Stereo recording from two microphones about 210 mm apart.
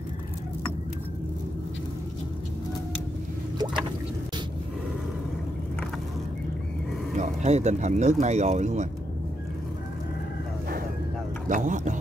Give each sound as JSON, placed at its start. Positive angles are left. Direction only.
{"t": 3.5, "sound": "a sound", "side_deg": -20}
{"t": 7.2, "sound": "speech", "side_deg": -35}
{"t": 11.4, "sound": "speech", "side_deg": -35}